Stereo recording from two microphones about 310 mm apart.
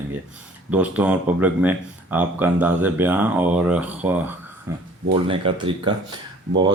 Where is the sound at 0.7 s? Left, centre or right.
Centre.